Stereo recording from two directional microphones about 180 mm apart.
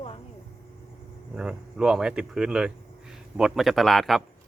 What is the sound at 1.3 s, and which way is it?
Speech, 5° right (ahead or behind).